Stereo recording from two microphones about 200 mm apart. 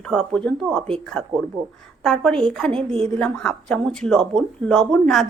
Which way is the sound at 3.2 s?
5° left (ahead or behind).